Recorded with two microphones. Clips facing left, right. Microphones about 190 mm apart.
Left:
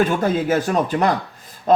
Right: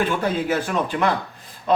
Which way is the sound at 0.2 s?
45° left (ahead or behind).